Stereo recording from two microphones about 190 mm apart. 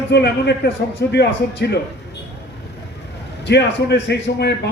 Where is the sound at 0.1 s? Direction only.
60° left (ahead or behind).